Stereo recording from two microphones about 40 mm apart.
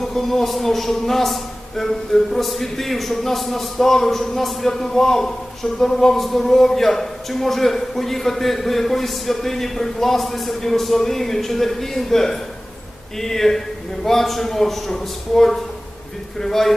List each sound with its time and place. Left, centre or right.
0.0 s a man's voice: centre